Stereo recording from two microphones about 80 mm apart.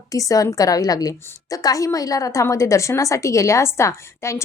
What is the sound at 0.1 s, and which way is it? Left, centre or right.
A woman's voice, left.